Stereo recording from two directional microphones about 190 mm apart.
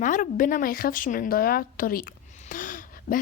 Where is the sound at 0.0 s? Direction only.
45° left (ahead or behind).